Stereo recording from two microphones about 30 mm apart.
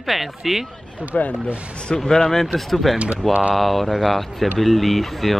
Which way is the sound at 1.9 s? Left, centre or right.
Left.